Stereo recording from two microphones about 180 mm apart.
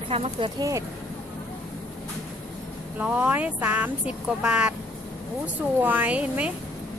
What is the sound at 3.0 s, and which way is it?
Speech, 10° right (ahead or behind).